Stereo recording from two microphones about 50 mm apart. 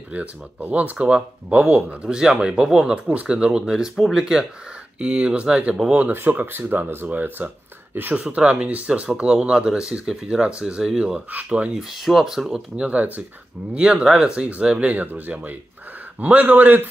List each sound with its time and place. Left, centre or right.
0.1 s speech: right
0.9 s speech: right
3.1 s speech: right
5.0 s speech: right
6.4 s speech: right
8.4 s speech: right
11.3 s speech: right
12.0 s speech: centre
12.7 s speech: right
14.3 s speech: right